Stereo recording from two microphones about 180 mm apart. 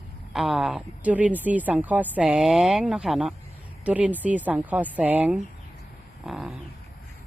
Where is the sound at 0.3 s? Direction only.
Centre (ahead or behind).